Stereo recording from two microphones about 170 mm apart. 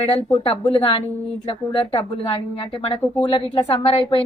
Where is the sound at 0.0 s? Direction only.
30° left (ahead or behind).